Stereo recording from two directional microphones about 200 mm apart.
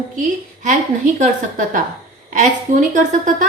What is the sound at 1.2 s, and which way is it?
A woman's voice, 40° right (ahead or behind).